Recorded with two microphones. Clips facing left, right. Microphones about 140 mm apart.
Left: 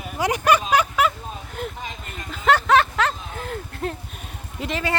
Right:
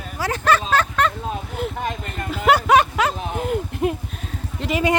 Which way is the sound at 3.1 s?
70° right (ahead or behind).